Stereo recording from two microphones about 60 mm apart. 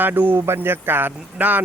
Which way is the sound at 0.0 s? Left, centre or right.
Right.